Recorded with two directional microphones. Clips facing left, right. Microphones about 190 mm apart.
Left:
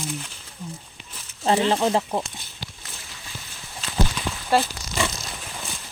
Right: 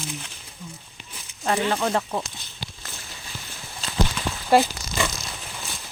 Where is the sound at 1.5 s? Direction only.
30° left (ahead or behind).